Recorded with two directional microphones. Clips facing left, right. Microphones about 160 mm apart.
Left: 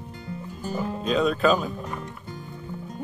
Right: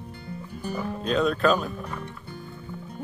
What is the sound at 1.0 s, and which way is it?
Speech, centre (ahead or behind).